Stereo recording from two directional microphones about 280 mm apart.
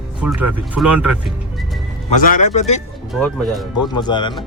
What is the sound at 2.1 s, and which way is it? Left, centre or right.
Speech, left.